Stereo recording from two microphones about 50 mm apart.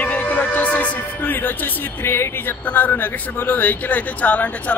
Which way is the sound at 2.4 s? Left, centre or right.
Left.